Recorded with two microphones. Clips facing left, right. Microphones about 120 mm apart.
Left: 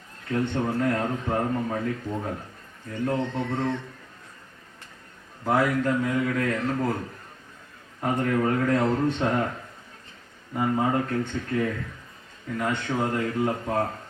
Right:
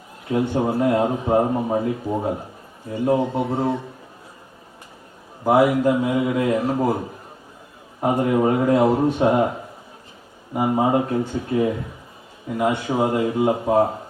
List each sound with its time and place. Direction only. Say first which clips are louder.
0.3 s a man's voice: right 5 dB; 15° right (ahead or behind)
5.5 s a man's voice: right 7 dB; 15° right (ahead or behind)